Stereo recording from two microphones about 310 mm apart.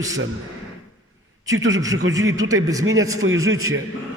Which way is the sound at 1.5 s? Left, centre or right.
Right.